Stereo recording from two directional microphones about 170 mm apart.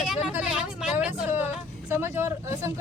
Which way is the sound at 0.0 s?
5° right (ahead or behind).